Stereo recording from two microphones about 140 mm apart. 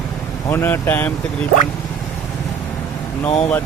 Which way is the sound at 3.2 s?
45° left (ahead or behind).